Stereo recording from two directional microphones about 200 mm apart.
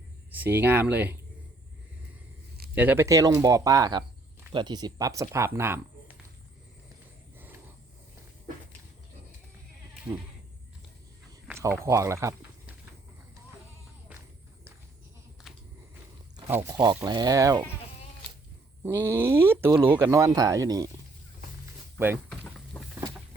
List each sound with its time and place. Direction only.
0.3 s speech: 10° right (ahead or behind)
2.7 s speech: 10° right (ahead or behind)
5.5 s a sound: 10° right (ahead or behind)
11.4 s speech: 15° right (ahead or behind)
15.5 s biting: centre (ahead or behind)
16.5 s speech: 10° right (ahead or behind)
18.8 s speech: 10° right (ahead or behind)
21.9 s speech: 10° right (ahead or behind)
22.3 s vehicle: centre (ahead or behind)